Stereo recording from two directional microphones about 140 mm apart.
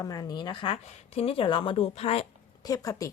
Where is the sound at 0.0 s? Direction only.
25° left (ahead or behind); by 2.2 s 45° left (ahead or behind).